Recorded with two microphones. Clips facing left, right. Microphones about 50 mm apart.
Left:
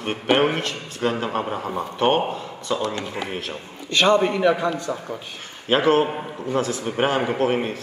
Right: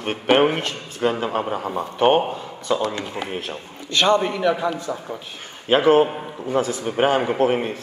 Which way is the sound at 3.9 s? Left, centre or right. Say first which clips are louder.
Even; left.